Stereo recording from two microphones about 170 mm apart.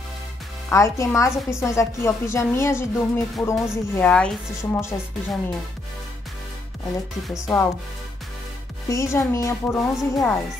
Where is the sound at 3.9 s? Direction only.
5° left (ahead or behind).